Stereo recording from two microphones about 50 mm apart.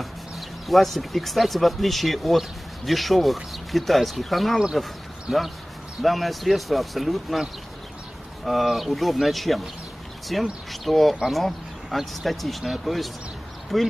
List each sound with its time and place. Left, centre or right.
0.7 s speech: centre
8.5 s speech: centre